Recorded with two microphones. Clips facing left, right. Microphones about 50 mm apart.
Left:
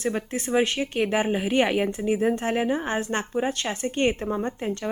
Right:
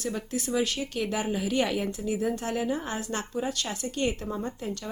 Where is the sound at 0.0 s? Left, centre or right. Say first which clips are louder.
Left 4 dB; left.